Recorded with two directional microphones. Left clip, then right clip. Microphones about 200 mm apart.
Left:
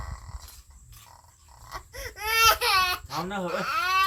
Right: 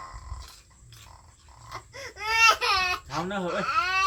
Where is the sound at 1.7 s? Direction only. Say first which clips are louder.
Left 1 dB; 40° left (ahead or behind).